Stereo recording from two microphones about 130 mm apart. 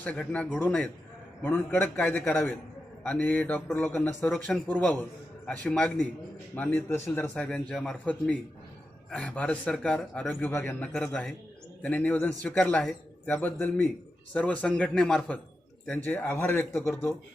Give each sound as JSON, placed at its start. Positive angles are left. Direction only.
{"t": 0.0, "sound": "a man's voice", "side_deg": 10}